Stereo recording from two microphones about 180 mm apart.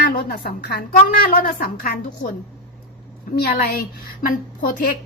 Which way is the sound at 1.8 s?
50° left (ahead or behind).